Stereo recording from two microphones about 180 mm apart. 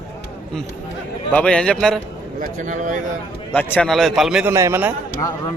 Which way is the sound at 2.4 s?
45° right (ahead or behind).